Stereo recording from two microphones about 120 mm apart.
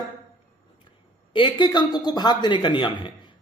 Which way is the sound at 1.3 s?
40° left (ahead or behind).